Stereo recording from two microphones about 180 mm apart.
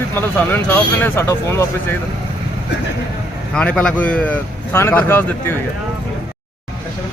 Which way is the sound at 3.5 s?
5° left (ahead or behind).